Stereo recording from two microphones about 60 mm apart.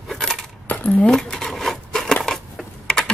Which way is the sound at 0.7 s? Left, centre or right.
Left.